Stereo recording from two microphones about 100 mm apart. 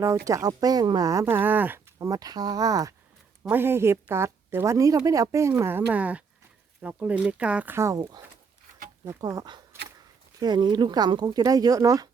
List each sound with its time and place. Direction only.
0.0 s speech: 30° right (ahead or behind)
1.2 s speech: 20° right (ahead or behind)
2.0 s speech: 40° right (ahead or behind)
3.5 s speech: 25° right (ahead or behind)
9.0 s speech: 35° right (ahead or behind)